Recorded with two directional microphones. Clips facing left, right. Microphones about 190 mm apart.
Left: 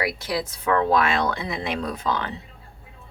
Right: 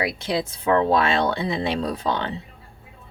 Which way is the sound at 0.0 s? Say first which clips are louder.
Right 2 dB; 25° right (ahead or behind).